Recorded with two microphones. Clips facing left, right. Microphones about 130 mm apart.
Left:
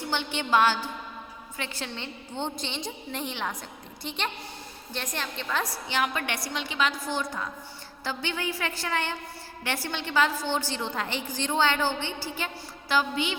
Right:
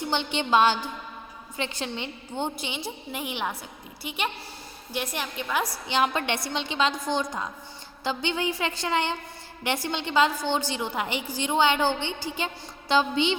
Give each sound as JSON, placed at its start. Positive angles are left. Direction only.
{"t": 0.0, "sound": "a woman's voice", "side_deg": -20}
{"t": 6.0, "sound": "a woman's voice", "side_deg": -25}